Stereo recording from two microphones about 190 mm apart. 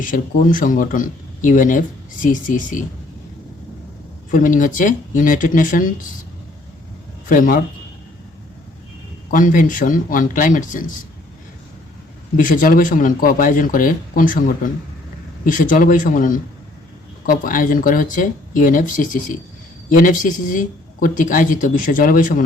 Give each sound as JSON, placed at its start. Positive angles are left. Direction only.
{"t": 0.0, "sound": "speech", "side_deg": 45}
{"t": 4.3, "sound": "speech", "side_deg": 45}
{"t": 7.3, "sound": "speech", "side_deg": 45}
{"t": 9.3, "sound": "speech", "side_deg": 45}
{"t": 12.4, "sound": "speech", "side_deg": 45}